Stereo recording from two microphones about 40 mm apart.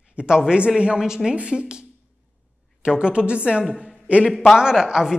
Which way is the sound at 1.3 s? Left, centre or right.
Right.